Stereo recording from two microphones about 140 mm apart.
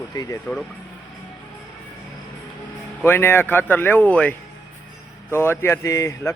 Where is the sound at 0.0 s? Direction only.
25° left (ahead or behind).